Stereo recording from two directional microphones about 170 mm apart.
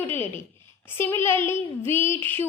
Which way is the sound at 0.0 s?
10° left (ahead or behind).